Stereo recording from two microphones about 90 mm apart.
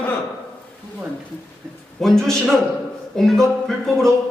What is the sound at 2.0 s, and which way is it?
A man's voice, 5° left (ahead or behind).